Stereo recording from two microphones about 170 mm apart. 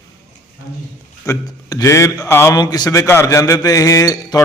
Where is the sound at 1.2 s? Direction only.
20° left (ahead or behind).